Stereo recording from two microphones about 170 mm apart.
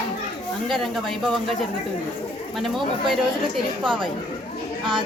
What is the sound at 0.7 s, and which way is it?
Speech, centre (ahead or behind).